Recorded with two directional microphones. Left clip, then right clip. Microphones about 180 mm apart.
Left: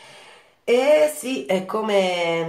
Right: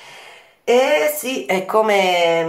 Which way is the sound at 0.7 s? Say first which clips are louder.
Right 1 dB; 20° right (ahead or behind).